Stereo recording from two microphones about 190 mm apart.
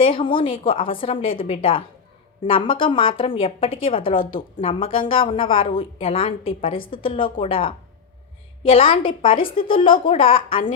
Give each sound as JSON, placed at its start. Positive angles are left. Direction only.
{"t": 0.0, "sound": "a woman's voice", "side_deg": 30}